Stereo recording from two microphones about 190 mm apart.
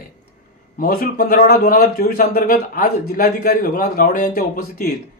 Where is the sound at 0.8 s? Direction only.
50° left (ahead or behind).